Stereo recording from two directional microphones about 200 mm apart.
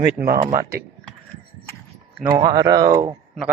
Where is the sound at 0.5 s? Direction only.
15° right (ahead or behind).